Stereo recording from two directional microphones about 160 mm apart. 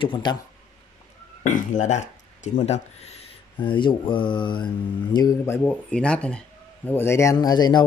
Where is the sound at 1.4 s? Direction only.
50° left (ahead or behind).